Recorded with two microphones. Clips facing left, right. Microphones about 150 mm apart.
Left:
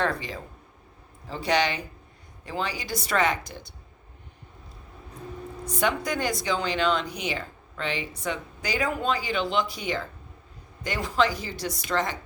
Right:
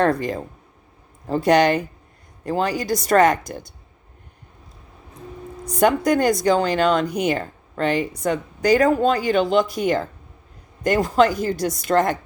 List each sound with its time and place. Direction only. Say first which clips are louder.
0.0 s speech: right 9 dB; 45° right (ahead or behind)
5.7 s speech: right 10 dB; 45° right (ahead or behind)